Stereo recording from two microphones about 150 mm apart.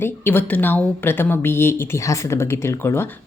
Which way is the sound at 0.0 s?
15° left (ahead or behind).